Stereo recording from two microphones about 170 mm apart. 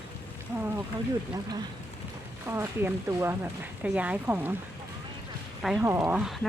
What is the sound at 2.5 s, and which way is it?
Speech, 15° right (ahead or behind).